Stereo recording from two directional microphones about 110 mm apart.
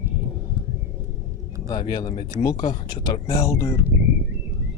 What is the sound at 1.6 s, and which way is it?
Speech, 40° left (ahead or behind).